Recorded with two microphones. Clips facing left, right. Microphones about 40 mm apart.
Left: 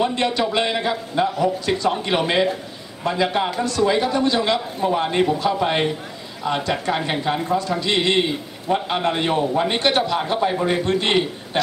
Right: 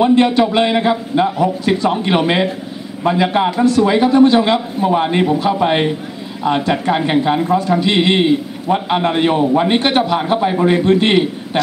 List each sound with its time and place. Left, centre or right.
0.0 s a man's voice: centre